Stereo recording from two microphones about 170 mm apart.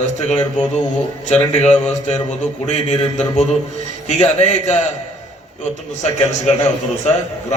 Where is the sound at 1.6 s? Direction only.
40° left (ahead or behind).